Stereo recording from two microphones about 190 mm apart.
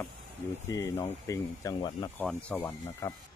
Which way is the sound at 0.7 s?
15° left (ahead or behind).